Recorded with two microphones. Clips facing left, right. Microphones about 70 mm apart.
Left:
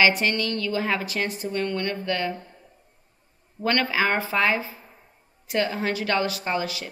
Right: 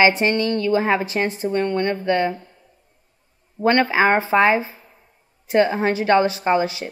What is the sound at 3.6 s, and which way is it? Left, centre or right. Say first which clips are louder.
A woman's voice: right 7 dB; right.